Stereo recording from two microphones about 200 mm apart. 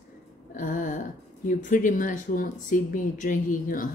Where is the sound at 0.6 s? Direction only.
40° left (ahead or behind).